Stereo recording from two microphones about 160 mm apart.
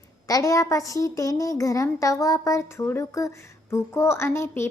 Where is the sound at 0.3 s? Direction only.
20° left (ahead or behind).